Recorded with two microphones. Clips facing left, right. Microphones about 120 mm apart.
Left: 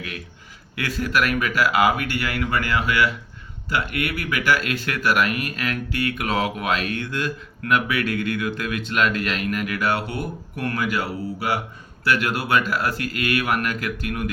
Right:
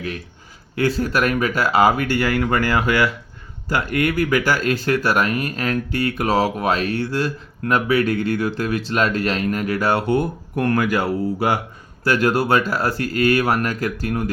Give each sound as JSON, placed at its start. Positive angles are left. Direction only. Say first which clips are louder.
{"t": 0.8, "sound": "speech", "louder": "right 4 dB", "side_deg": -30}
{"t": 12.0, "sound": "speech", "louder": "right 5 dB", "side_deg": -35}